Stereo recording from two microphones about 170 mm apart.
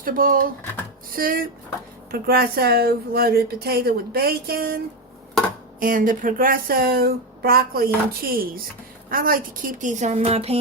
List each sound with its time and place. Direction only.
0.0 s a woman's voice: 55° right (ahead or behind)
5.8 s a woman's voice: 55° right (ahead or behind); by 10.6 s 35° right (ahead or behind)